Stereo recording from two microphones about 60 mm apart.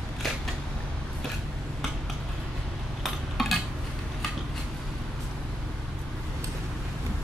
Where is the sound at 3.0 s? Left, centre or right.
Centre.